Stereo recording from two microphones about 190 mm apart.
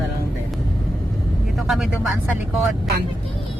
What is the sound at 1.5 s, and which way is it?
Speech, centre (ahead or behind).